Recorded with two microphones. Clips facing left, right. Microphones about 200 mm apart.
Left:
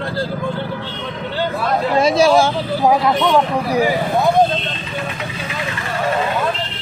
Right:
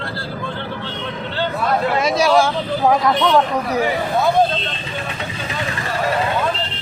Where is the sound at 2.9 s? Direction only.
10° left (ahead or behind).